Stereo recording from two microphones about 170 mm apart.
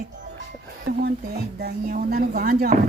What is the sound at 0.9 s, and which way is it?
A woman's voice, 60° right (ahead or behind).